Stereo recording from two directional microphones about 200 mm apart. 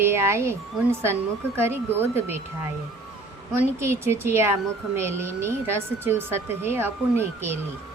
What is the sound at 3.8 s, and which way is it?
Speech, 15° right (ahead or behind).